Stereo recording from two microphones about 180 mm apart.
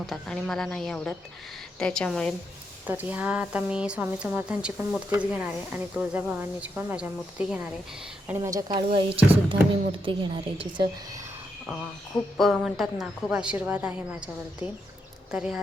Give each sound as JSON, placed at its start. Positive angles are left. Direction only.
{"t": 0.0, "sound": "a woman's voice", "side_deg": 0}
{"t": 2.8, "sound": "speech", "side_deg": -10}
{"t": 8.3, "sound": "a woman's voice", "side_deg": -20}
{"t": 12.4, "sound": "a woman's voice", "side_deg": 0}
{"t": 15.3, "sound": "a woman's voice", "side_deg": -5}